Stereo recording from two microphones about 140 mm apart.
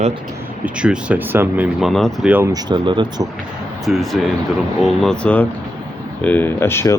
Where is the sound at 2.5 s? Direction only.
35° right (ahead or behind).